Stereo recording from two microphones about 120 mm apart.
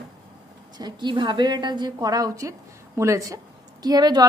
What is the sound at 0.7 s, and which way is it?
A woman's voice, 40° right (ahead or behind).